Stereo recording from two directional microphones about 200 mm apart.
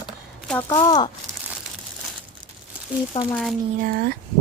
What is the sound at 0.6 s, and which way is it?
Speech, 20° left (ahead or behind).